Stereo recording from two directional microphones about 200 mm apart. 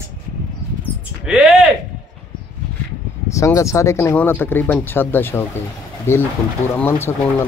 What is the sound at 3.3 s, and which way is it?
Speech, 15° left (ahead or behind).